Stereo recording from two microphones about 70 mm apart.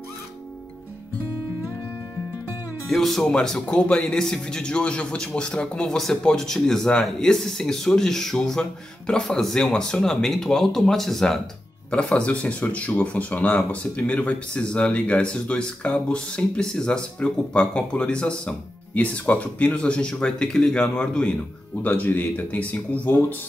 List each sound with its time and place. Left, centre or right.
2.9 s speech: centre
21.8 s speech: left